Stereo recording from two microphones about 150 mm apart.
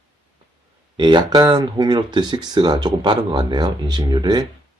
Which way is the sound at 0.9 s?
30° right (ahead or behind).